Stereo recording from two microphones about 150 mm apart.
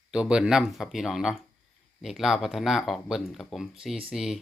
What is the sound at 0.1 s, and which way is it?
Speech, 5° right (ahead or behind).